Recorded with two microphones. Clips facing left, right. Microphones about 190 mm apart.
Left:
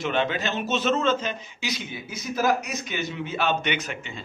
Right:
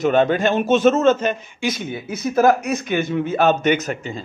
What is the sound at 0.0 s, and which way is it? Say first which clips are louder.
A man's voice: right 9 dB; 45° right (ahead or behind).